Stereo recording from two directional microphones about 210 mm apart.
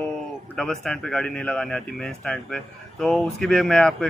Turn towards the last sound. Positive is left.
turn(degrees=5)  # may be behind; listen again after turning